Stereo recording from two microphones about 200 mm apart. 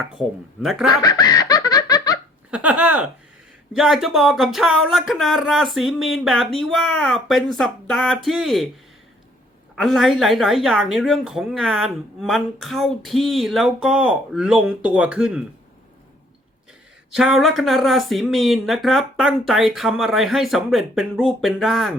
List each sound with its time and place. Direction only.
0.6 s speech: centre (ahead or behind)
0.9 s laughter: 20° left (ahead or behind)
2.5 s speech: 5° right (ahead or behind)
9.7 s speech: centre (ahead or behind)
17.2 s speech: centre (ahead or behind)